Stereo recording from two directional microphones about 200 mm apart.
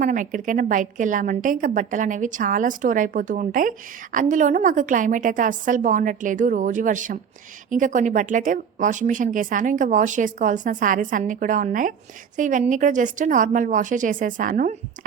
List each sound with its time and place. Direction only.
0.0 s a woman's voice: 40° right (ahead or behind)